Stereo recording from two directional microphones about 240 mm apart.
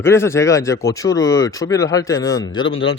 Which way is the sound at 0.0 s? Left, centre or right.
Centre.